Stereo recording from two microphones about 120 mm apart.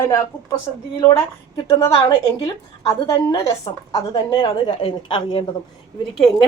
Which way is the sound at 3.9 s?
35° left (ahead or behind).